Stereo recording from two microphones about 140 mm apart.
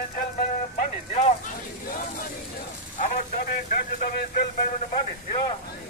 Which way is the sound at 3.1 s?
90° left.